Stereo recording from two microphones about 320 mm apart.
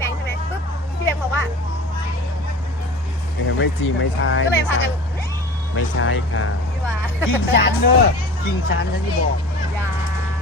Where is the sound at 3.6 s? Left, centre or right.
Left.